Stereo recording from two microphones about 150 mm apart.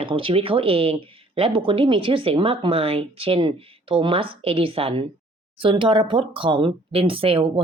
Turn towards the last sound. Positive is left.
turn(degrees=-35)  # may be behind; listen again after turning